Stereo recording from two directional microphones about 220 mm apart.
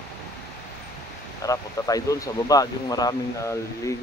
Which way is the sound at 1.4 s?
15° left (ahead or behind).